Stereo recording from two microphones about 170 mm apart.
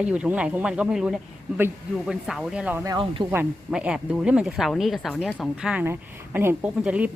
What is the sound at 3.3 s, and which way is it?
Speech, 10° right (ahead or behind).